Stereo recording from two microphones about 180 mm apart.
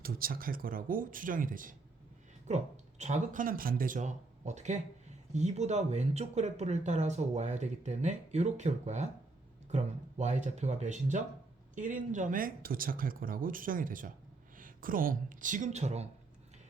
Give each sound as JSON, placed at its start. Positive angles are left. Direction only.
{"t": 0.0, "sound": "speech", "side_deg": -55}
{"t": 3.0, "sound": "speech", "side_deg": -45}